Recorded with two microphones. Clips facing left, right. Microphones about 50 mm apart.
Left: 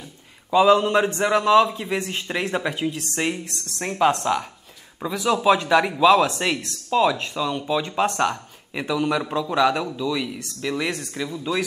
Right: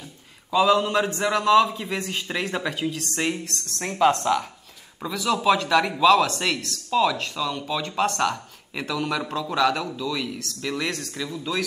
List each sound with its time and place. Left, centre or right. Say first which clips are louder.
0.5 s speech: left 3 dB; centre